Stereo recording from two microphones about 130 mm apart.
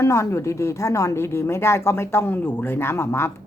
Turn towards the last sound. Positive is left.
turn(degrees=20)  # may be behind; listen again after turning